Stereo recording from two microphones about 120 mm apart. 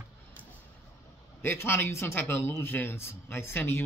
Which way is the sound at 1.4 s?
20° left (ahead or behind).